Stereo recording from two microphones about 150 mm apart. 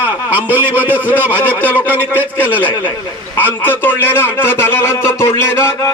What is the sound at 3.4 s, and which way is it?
A man's voice, 15° left (ahead or behind).